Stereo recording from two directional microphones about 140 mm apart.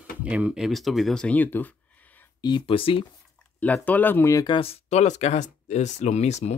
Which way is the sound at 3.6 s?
10° left (ahead or behind).